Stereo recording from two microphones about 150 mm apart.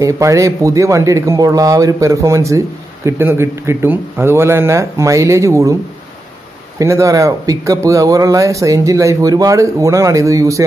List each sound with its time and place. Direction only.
0.0 s speech: 20° right (ahead or behind)
6.8 s speech: 20° right (ahead or behind)